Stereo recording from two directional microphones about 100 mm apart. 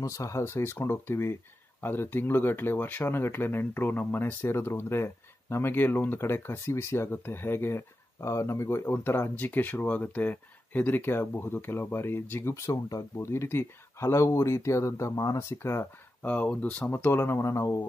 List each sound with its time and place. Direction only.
0.0 s speech: 30° left (ahead or behind)
16.3 s speech: 15° left (ahead or behind)